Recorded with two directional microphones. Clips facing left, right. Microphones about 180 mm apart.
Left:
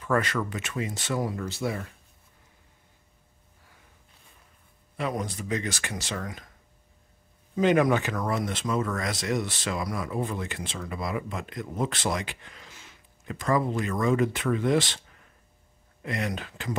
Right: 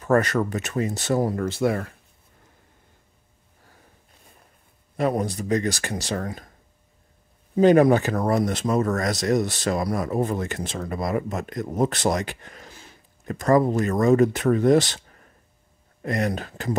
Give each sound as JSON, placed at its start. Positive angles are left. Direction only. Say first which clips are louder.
{"t": 0.0, "sound": "speech", "louder": "right 6 dB", "side_deg": -40}
{"t": 4.9, "sound": "speech", "louder": "right 7 dB", "side_deg": -40}
{"t": 7.5, "sound": "speech", "louder": "right 6 dB", "side_deg": -35}